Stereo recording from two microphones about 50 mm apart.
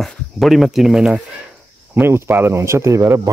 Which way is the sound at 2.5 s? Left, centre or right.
Right.